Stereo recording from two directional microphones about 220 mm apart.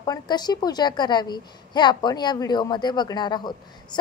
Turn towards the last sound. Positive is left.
turn(degrees=20)  # may be behind; listen again after turning